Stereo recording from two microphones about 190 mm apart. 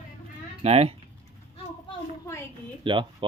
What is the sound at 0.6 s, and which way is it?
Speech, 30° right (ahead or behind).